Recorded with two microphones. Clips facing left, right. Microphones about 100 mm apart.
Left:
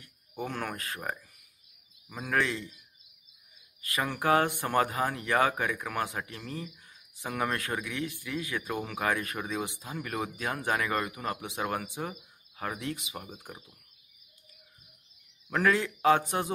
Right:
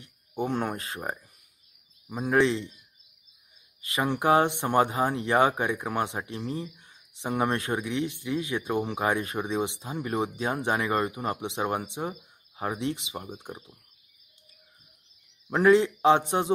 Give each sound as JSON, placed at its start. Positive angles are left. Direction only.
{"t": 0.0, "sound": "speech", "side_deg": -25}
{"t": 3.8, "sound": "speech", "side_deg": -25}
{"t": 15.5, "sound": "speech", "side_deg": -25}